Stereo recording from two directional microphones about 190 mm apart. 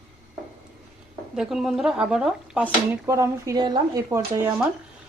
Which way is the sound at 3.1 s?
15° right (ahead or behind).